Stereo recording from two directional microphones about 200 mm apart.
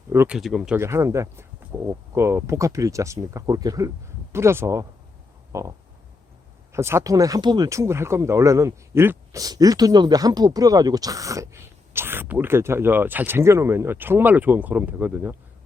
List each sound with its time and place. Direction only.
0.1 s speech: 15° right (ahead or behind)
0.3 s speech: centre (ahead or behind)
0.8 s speech: 15° right (ahead or behind)
5.5 s a sound: 15° right (ahead or behind)
6.7 s speech: 15° right (ahead or behind)